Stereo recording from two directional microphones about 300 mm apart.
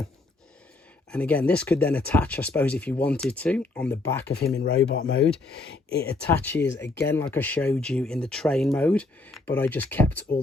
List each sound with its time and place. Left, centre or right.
1.1 s speech: centre
4.5 s speech: left
6.3 s speech: centre